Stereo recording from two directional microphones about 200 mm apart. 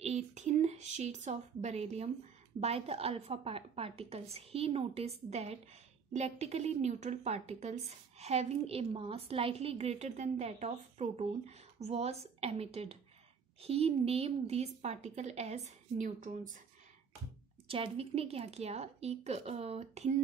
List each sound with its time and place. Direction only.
0.0 s a woman's voice: 35° right (ahead or behind)
17.6 s speech: 30° right (ahead or behind)